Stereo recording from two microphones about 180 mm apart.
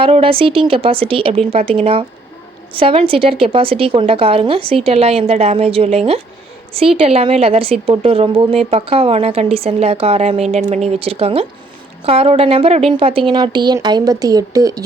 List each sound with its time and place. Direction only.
0.0 s a woman's voice: 30° right (ahead or behind)